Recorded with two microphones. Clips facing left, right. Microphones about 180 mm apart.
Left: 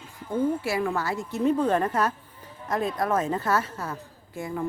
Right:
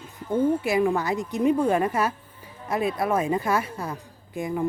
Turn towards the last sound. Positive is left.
turn(degrees=-15)  # may be behind; listen again after turning